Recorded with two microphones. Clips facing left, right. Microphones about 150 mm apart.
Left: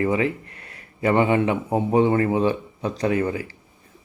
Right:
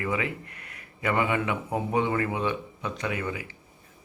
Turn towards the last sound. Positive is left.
turn(degrees=35)  # may be behind; listen again after turning